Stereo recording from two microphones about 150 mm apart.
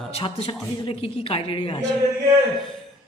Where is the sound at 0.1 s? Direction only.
40° left (ahead or behind).